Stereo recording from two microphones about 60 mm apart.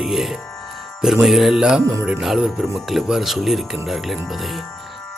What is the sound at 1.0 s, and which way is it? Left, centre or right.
Speech, centre.